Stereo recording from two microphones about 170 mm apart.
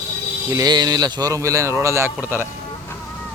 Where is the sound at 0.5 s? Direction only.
25° right (ahead or behind).